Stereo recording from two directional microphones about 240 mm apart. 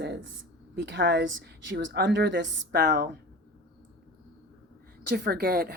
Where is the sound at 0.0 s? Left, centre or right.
Right.